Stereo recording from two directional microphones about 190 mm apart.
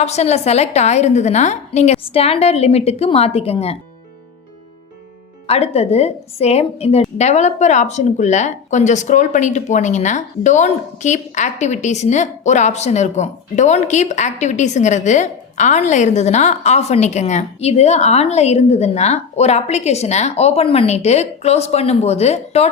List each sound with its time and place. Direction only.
0.0 s a woman's voice: 35° left (ahead or behind)
5.5 s a woman's voice: 35° left (ahead or behind)